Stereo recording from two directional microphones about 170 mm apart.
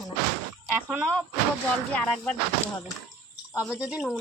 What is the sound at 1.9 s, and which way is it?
Speech, 10° left (ahead or behind).